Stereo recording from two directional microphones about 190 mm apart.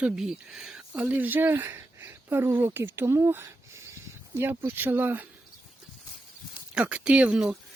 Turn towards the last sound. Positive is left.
turn(degrees=-5)  # may be behind; listen again after turning